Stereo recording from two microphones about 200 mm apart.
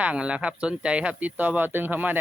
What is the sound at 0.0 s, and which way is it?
Speech, 5° right (ahead or behind).